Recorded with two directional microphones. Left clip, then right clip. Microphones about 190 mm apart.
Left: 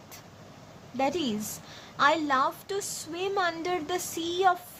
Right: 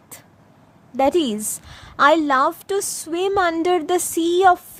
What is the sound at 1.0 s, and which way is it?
A woman's voice, 55° right (ahead or behind).